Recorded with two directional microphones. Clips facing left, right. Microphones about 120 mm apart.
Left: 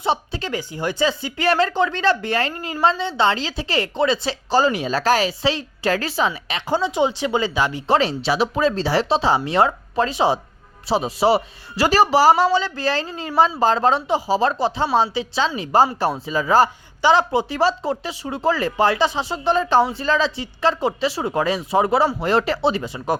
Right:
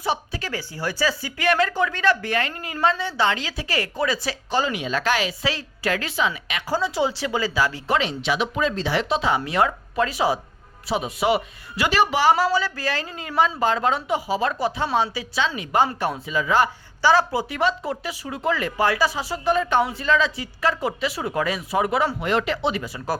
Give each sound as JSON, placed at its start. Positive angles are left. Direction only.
{"t": 0.0, "sound": "a man's voice", "side_deg": 25}
{"t": 6.7, "sound": "speech", "side_deg": 25}
{"t": 7.9, "sound": "a man's voice", "side_deg": 35}
{"t": 17.0, "sound": "speech", "side_deg": 20}